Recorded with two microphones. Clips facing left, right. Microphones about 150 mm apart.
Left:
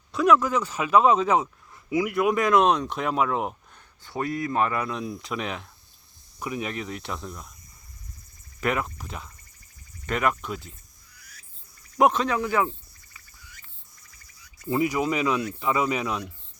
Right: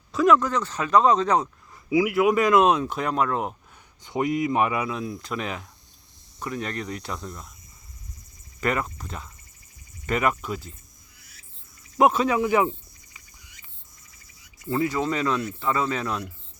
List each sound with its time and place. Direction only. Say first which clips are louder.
0.1 s speech: right 1 dB; centre (ahead or behind)
1.9 s speech: right 3 dB; 5° right (ahead or behind)
4.0 s speech: right 4 dB; 20° right (ahead or behind); by 7.5 s centre (ahead or behind)
8.6 s speech: right 1 dB; centre (ahead or behind)
11.2 s owl: left 4 dB; 25° right (ahead or behind)
11.9 s speech: right 2 dB; 5° right (ahead or behind)
13.1 s cricket: left 4 dB; 20° right (ahead or behind)
14.7 s speech: even; 15° left (ahead or behind)